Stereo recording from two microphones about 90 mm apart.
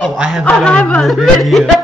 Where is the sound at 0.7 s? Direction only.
10° left (ahead or behind).